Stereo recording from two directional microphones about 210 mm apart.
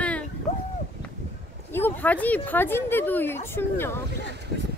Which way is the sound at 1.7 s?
10° left (ahead or behind).